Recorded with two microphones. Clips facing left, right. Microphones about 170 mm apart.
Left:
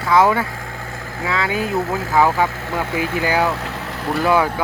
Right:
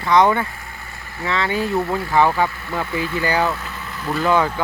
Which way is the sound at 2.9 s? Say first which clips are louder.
Left 1 dB; 90° left.